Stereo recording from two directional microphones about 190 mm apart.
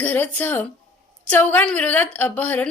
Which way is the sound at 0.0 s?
10° left (ahead or behind).